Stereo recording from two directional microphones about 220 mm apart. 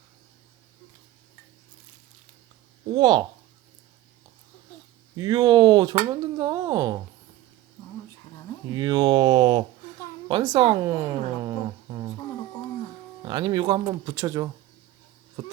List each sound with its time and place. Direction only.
2.9 s speech: 20° right (ahead or behind)
5.1 s speech: 20° right (ahead or behind)
8.7 s speech: 20° right (ahead or behind)
13.2 s speech: 20° right (ahead or behind)